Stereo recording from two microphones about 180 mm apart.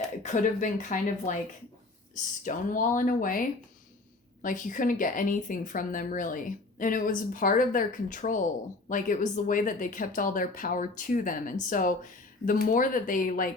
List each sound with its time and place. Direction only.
0.2 s speech: 45° left (ahead or behind)
2.4 s speech: 45° left (ahead or behind)
4.4 s speech: 45° left (ahead or behind)